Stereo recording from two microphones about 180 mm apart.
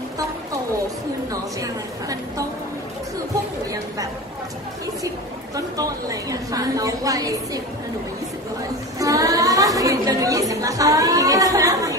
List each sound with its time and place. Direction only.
1.3 s a woman's voice: 20° right (ahead or behind)
5.8 s a woman's voice: 20° right (ahead or behind)
9.0 s a woman's voice: 20° right (ahead or behind)